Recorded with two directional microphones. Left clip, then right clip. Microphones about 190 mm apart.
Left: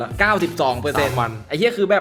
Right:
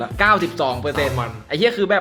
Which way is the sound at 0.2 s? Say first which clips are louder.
Right 1 dB; 5° left (ahead or behind).